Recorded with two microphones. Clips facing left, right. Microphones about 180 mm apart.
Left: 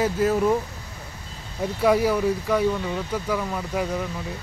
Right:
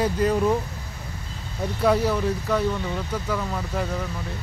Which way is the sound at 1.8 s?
10° left (ahead or behind).